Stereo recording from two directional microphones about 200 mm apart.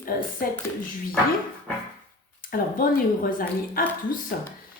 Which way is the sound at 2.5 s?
45° left (ahead or behind).